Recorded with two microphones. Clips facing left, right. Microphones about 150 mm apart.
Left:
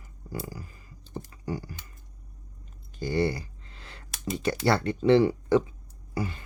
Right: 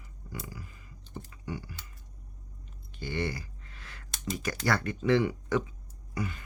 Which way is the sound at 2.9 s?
35° left (ahead or behind).